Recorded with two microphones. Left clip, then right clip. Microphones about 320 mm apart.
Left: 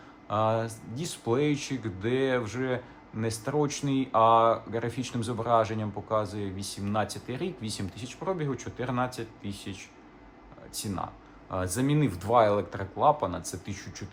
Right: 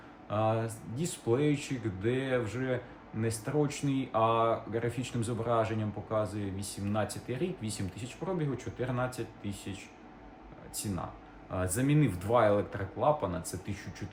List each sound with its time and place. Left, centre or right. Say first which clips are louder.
0.3 s speech: left 4 dB; centre
11.5 s speech: left 2 dB; centre